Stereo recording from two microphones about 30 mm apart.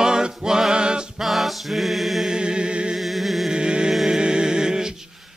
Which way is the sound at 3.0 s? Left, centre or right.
Centre.